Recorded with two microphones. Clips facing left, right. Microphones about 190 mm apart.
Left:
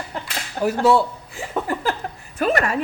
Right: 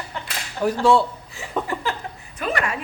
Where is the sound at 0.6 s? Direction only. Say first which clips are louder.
Left 1 dB; 50° left (ahead or behind).